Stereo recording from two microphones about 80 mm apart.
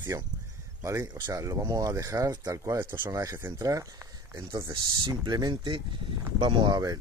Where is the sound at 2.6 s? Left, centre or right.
Right.